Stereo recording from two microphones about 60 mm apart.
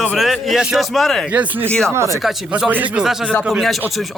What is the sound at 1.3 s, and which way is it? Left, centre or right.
Speech, right.